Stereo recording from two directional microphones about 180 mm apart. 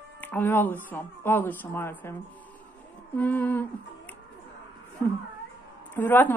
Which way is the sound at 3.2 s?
10° left (ahead or behind).